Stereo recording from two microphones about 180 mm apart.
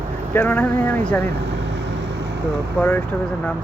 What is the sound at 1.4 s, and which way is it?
Vehicle, 75° right (ahead or behind).